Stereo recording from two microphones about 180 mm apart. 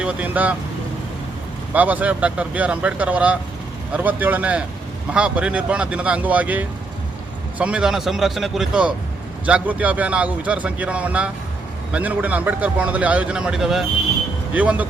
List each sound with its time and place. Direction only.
0.0 s a man's voice: 10° right (ahead or behind)
1.7 s a man's voice: 10° right (ahead or behind)